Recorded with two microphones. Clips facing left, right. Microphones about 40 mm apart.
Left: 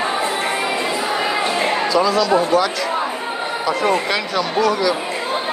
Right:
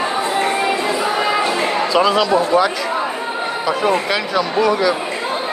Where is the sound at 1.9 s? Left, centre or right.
Right.